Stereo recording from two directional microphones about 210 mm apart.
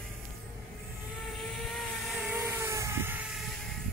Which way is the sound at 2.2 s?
10° right (ahead or behind).